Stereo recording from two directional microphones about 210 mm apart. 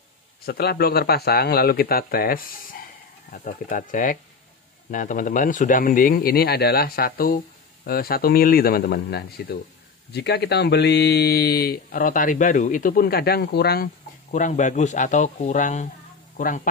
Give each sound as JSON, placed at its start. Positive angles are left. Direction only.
{"t": 0.5, "sound": "speech", "side_deg": 45}
{"t": 14.3, "sound": "speech", "side_deg": 35}